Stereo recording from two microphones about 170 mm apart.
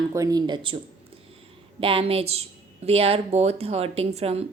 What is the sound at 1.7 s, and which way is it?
A woman's voice, 30° right (ahead or behind).